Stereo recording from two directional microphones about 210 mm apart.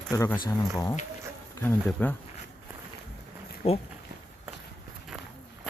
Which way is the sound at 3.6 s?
30° left (ahead or behind).